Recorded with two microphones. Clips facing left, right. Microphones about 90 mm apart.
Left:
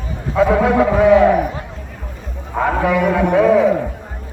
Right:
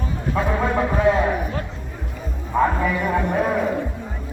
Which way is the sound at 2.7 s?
90° left.